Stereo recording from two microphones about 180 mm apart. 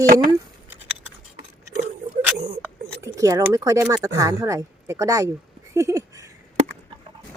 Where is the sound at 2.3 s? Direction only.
65° right (ahead or behind).